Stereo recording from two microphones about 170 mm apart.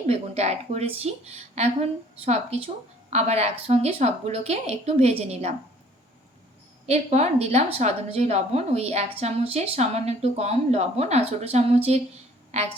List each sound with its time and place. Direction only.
0.1 s a woman's voice: 40° right (ahead or behind)
6.8 s a woman's voice: 40° right (ahead or behind)